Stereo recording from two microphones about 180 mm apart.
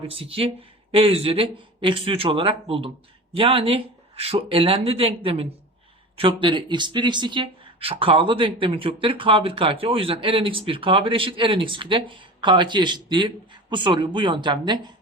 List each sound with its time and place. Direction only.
0.1 s speech: 30° right (ahead or behind)